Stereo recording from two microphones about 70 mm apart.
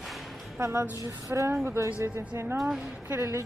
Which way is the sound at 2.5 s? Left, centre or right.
Centre.